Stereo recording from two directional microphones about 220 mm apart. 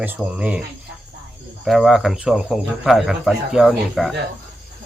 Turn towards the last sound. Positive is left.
turn(degrees=0)  # may be behind; listen again after turning